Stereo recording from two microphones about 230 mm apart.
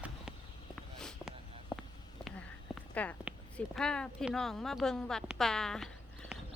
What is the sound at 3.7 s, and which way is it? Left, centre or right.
A woman's voice, centre.